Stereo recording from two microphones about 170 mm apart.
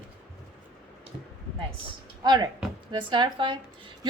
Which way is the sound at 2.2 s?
25° right (ahead or behind).